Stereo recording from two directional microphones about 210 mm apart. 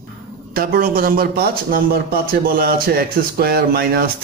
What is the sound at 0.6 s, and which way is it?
A man's voice, 45° right (ahead or behind).